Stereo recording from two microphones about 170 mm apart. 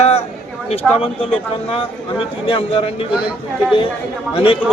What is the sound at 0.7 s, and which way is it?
A man's voice, 35° left (ahead or behind).